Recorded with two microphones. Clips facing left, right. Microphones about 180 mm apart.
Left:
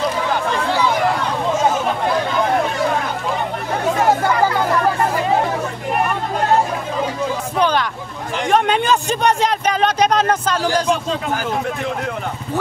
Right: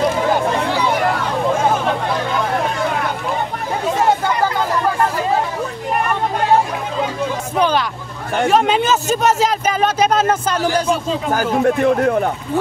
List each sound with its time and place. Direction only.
7.5 s hubbub: 10° right (ahead or behind)
8.5 s speech: 5° right (ahead or behind)
11.3 s speech: 50° right (ahead or behind)